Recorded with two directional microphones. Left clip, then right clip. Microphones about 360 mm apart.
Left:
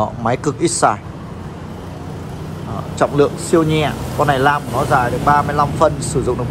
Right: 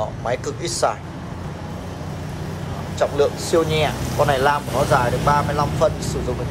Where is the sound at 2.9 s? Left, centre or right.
Centre.